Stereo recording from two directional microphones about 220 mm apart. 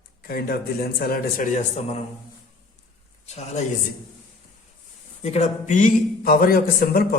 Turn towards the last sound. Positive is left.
turn(degrees=40)  # may be behind; listen again after turning